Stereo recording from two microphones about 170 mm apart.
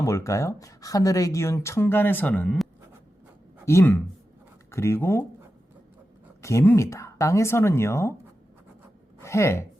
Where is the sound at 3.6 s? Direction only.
15° left (ahead or behind).